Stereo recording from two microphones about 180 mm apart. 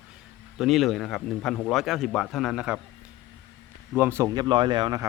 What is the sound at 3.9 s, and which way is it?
Speech, 10° right (ahead or behind).